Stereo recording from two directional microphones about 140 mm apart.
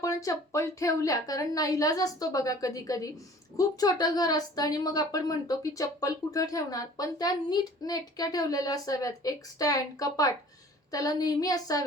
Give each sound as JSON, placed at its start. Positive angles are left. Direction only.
{"t": 0.0, "sound": "a woman's voice", "side_deg": 25}